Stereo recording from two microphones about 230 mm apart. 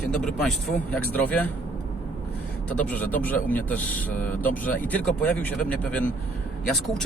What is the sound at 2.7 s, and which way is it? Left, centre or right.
Speech, centre.